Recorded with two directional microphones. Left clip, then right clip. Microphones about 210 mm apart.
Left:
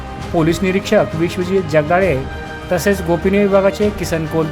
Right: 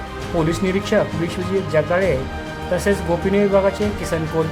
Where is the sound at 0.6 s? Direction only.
20° left (ahead or behind).